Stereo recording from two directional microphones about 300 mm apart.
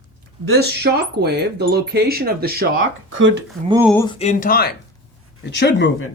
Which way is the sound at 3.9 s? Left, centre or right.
Centre.